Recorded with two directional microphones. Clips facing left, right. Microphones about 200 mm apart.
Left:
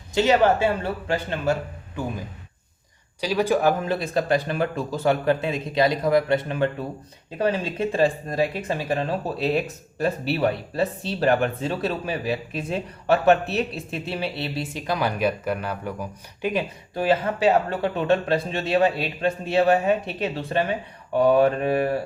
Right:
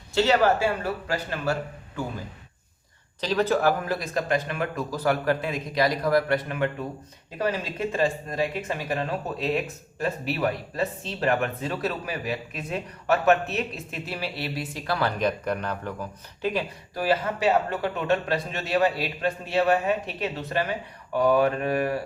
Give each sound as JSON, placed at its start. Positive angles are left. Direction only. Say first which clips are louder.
{"t": 0.1, "sound": "speech", "louder": "left 2 dB", "side_deg": 15}
{"t": 3.2, "sound": "speech", "louder": "left 2 dB", "side_deg": 10}